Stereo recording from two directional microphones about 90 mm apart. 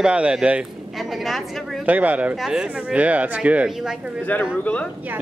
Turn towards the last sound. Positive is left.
turn(degrees=15)  # may be behind; listen again after turning